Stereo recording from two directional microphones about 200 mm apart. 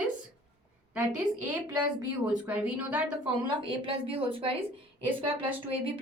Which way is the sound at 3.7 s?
25° right (ahead or behind).